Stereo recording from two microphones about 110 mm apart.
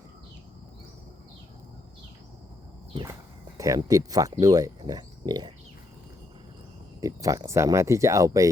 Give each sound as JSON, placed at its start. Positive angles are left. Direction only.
{"t": 3.8, "sound": "speech", "side_deg": -30}
{"t": 7.0, "sound": "speech", "side_deg": -30}